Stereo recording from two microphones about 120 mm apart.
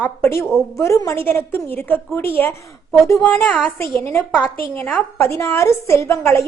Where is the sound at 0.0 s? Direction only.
20° left (ahead or behind).